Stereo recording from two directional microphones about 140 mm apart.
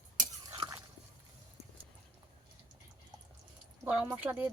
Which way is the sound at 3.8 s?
10° right (ahead or behind).